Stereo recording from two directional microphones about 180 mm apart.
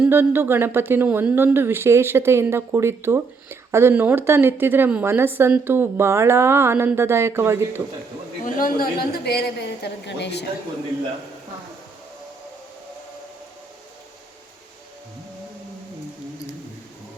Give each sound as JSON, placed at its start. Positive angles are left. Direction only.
{"t": 0.0, "sound": "speech", "side_deg": -10}
{"t": 8.4, "sound": "a woman's voice", "side_deg": 50}